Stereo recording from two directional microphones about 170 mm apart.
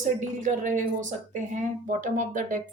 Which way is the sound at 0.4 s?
50° right (ahead or behind).